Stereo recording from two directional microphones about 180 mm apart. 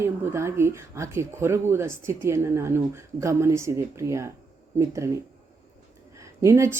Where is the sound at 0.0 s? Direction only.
15° right (ahead or behind).